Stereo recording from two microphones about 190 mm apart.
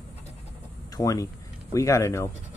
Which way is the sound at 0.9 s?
20° left (ahead or behind).